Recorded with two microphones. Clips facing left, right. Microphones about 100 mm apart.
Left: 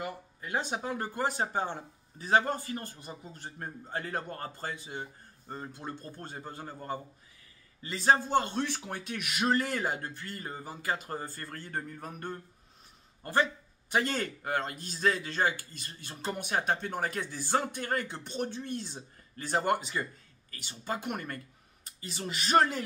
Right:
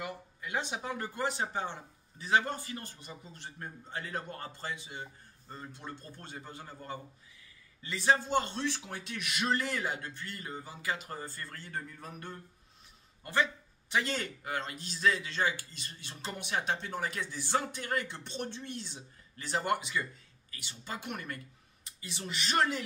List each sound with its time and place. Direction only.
0.0 s a man's voice: 40° left (ahead or behind)